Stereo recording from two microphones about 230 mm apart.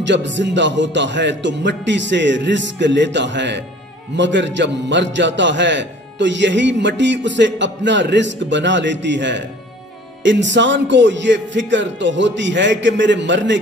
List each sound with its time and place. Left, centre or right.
0.0 s a man's voice: right